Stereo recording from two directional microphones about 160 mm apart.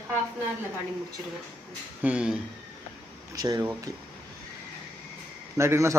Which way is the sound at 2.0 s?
5° right (ahead or behind).